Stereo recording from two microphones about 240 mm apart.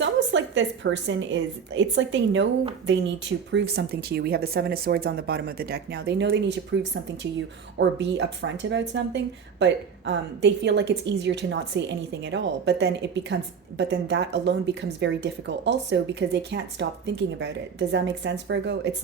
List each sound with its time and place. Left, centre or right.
0.0 s a woman's voice: right